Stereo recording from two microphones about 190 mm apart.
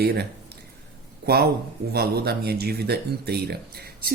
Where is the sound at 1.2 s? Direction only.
55° right (ahead or behind).